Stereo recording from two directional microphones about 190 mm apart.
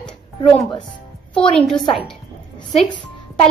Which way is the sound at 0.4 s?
25° left (ahead or behind).